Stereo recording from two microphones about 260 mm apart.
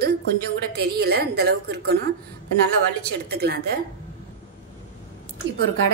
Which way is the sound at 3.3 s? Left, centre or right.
Right.